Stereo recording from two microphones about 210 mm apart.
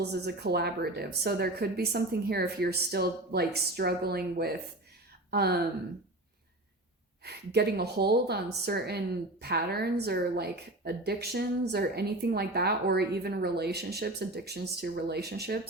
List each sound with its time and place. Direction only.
0.0 s a woman's voice: 50° right (ahead or behind)
7.3 s a woman's voice: 50° right (ahead or behind)